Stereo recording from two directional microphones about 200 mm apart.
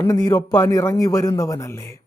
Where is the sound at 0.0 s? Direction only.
15° left (ahead or behind).